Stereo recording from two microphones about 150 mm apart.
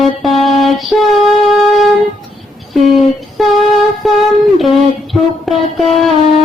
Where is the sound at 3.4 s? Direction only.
Centre (ahead or behind).